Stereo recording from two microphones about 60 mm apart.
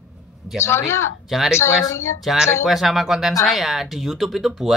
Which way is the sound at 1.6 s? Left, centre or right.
Left.